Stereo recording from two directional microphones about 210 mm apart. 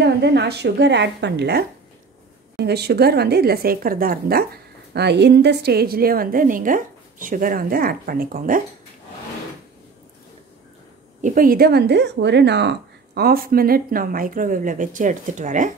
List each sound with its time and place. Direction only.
0.0 s a woman's voice: 55° right (ahead or behind)
11.1 s speech: 40° right (ahead or behind)